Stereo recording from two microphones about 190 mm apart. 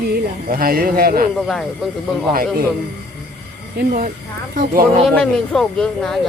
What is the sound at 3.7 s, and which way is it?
Speech, 45° right (ahead or behind).